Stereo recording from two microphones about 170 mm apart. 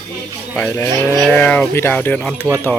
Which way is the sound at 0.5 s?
15° left (ahead or behind).